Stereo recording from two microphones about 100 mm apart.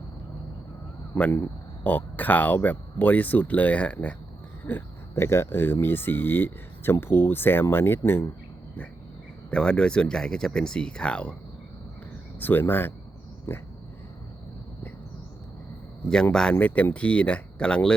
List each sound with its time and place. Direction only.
1.3 s speech: 20° left (ahead or behind)
9.5 s speech: 10° left (ahead or behind)
12.4 s speech: 20° left (ahead or behind)
16.0 s speech: 10° left (ahead or behind)